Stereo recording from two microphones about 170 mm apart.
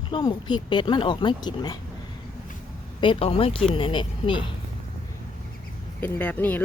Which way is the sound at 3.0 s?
30° left (ahead or behind).